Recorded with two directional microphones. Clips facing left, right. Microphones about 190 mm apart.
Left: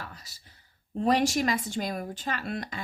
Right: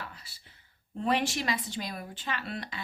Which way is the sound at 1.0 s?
40° left (ahead or behind).